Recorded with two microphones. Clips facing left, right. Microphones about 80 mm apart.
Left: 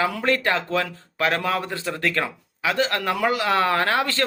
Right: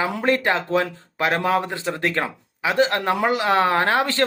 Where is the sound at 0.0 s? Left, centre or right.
Right.